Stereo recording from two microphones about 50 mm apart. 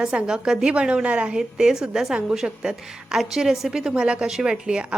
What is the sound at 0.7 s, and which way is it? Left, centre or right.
Speech, right.